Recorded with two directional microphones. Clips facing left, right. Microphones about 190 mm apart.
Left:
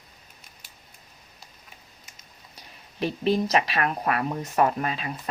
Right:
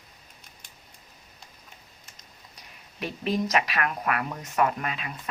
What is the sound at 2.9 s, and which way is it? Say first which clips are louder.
Speech: left 4 dB; 30° left (ahead or behind).